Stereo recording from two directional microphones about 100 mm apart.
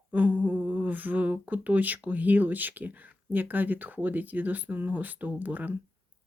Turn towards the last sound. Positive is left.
turn(degrees=-15)  # may be behind; listen again after turning